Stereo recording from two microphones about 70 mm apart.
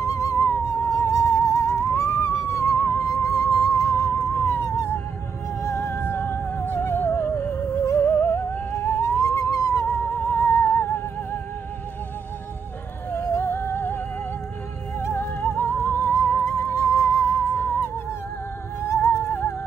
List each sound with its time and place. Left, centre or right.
0.0 s music: left
0.4 s music: left
13.1 s music: left
18.8 s music: left
19.2 s music: left